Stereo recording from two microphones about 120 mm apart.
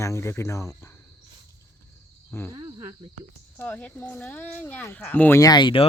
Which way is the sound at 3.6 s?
15° left (ahead or behind).